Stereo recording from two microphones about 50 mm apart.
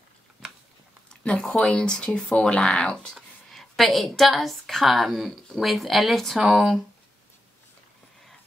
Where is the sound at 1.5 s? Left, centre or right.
Centre.